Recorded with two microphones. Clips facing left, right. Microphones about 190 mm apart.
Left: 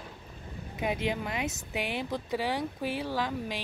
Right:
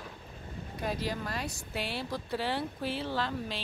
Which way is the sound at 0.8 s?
20° left (ahead or behind).